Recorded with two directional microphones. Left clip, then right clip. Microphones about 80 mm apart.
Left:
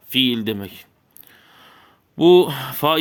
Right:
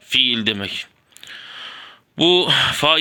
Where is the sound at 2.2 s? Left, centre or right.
Left.